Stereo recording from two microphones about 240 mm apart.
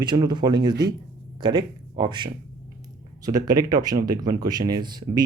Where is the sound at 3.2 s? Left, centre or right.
Centre.